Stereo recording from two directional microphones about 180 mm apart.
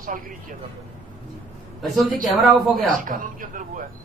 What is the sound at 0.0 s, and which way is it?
Speech, 50° right (ahead or behind).